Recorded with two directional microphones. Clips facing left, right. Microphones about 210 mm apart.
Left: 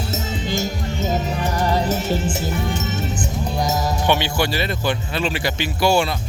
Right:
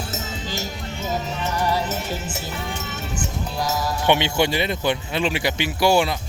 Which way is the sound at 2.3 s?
45° left (ahead or behind).